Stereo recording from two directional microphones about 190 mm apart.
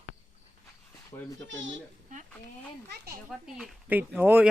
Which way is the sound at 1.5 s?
80° right.